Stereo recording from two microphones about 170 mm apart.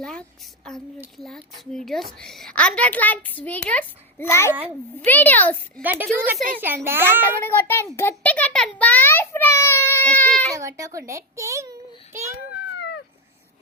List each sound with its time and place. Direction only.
0.0 s a woman's voice: 5° left (ahead or behind)
5.8 s a child's voice: 10° right (ahead or behind)
6.2 s speech: 55° right (ahead or behind)
6.6 s a child's voice: 10° right (ahead or behind)
7.4 s a woman's voice: 15° left (ahead or behind)
10.5 s a child's voice: 20° right (ahead or behind)